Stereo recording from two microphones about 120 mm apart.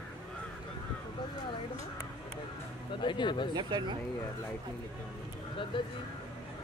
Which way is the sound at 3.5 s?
40° right (ahead or behind).